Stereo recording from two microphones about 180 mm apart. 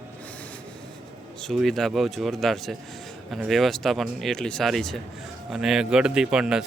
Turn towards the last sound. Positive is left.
turn(degrees=-5)  # may be behind; listen again after turning